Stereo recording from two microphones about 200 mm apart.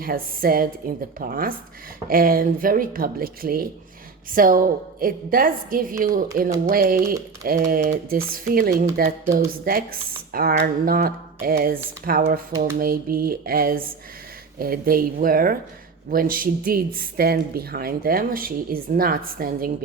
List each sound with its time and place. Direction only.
0.0 s speech: 45° right (ahead or behind)